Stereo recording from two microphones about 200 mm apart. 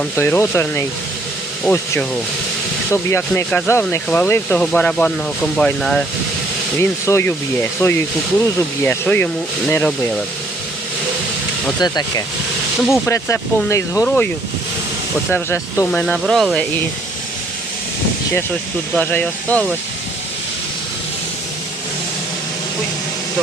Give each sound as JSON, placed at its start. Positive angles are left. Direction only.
{"t": 0.2, "sound": "speech", "side_deg": 10}
{"t": 11.8, "sound": "speech", "side_deg": 20}
{"t": 15.3, "sound": "speech", "side_deg": 10}
{"t": 18.9, "sound": "speech", "side_deg": 10}